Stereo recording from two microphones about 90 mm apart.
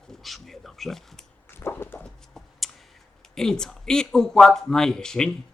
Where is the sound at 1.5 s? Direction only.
25° left (ahead or behind).